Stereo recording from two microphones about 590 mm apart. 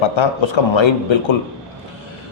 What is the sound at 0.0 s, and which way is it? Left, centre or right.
Speech, left.